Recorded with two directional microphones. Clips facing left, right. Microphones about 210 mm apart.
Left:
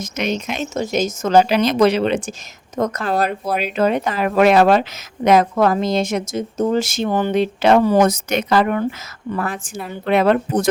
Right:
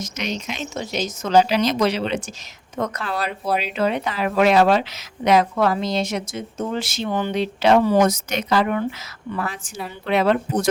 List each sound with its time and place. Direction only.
0.0 s speech: 55° left (ahead or behind)